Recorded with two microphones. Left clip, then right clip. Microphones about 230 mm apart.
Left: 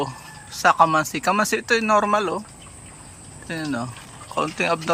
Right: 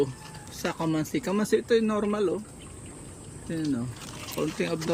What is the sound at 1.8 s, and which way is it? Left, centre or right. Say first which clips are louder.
Speech: left 9 dB; left.